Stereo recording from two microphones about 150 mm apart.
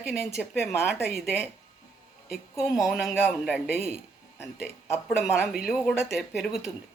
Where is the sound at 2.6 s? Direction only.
5° right (ahead or behind).